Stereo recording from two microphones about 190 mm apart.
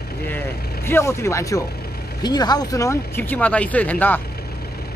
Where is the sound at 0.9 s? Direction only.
15° left (ahead or behind).